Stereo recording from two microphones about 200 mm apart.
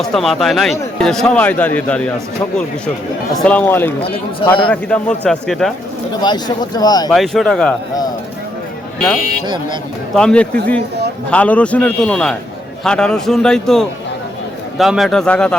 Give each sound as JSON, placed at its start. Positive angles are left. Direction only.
{"t": 0.0, "sound": "a man's voice", "side_deg": 0}
{"t": 3.4, "sound": "a man's voice", "side_deg": 5}
{"t": 6.2, "sound": "speech", "side_deg": 20}
{"t": 7.1, "sound": "a man's voice", "side_deg": 0}
{"t": 10.2, "sound": "a man's voice", "side_deg": 5}